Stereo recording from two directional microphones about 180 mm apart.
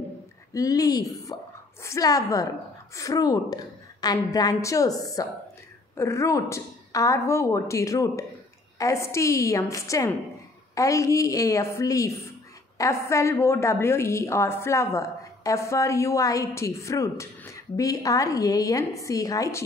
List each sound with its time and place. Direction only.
0.5 s a woman's voice: 20° left (ahead or behind)